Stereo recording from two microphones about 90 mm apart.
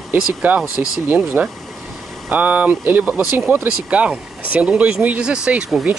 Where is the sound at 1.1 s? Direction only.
20° right (ahead or behind).